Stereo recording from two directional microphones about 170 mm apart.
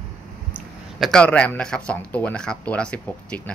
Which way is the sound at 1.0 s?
5° left (ahead or behind).